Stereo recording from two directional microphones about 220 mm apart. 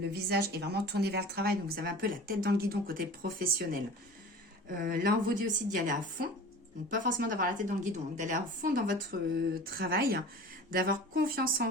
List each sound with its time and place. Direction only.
0.1 s a woman's voice: 45° right (ahead or behind)
4.8 s a woman's voice: 40° right (ahead or behind)